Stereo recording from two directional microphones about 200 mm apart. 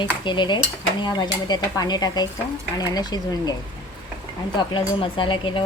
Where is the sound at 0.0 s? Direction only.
25° left (ahead or behind).